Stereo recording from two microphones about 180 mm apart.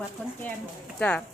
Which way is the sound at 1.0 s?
5° left (ahead or behind).